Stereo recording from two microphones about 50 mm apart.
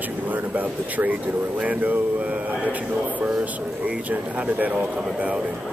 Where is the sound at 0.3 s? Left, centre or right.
Right.